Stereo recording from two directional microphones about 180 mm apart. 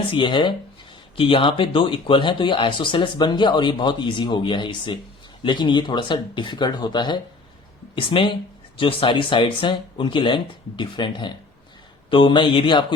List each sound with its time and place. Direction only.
0.1 s speech: 25° left (ahead or behind)